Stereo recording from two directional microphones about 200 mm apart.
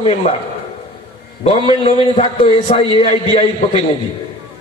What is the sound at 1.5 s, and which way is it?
A man's voice, 25° left (ahead or behind).